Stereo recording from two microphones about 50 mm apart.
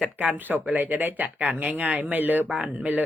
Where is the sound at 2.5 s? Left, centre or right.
Centre.